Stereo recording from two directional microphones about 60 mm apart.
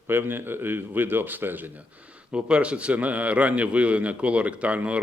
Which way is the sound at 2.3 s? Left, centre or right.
Centre.